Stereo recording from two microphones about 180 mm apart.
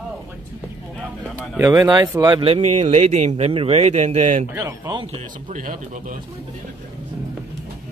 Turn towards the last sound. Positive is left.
turn(degrees=-45)  # may be behind; listen again after turning